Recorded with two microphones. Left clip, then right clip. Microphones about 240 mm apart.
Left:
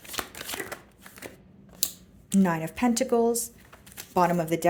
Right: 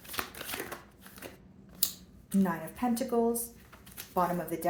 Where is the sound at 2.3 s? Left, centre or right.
Left.